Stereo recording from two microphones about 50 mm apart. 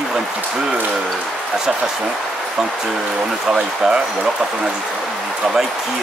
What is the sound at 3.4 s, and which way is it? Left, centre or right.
Speech, centre.